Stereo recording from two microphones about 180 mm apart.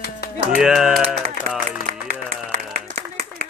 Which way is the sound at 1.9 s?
45° right (ahead or behind).